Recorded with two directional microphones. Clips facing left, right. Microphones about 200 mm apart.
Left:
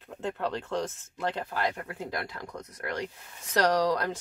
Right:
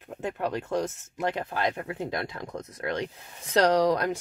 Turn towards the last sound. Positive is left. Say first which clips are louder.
# right 3 dB
turn(degrees=-20)  # may be behind; listen again after turning